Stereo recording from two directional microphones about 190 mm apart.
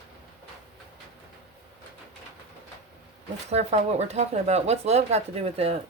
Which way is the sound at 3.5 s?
35° right (ahead or behind).